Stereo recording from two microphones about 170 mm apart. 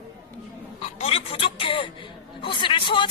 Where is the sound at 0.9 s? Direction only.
35° left (ahead or behind).